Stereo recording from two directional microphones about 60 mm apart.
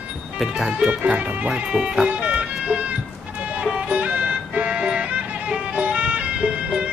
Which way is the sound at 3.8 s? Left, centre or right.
Centre.